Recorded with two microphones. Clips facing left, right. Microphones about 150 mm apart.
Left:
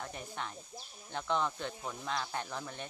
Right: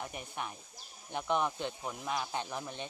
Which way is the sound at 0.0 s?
15° right (ahead or behind).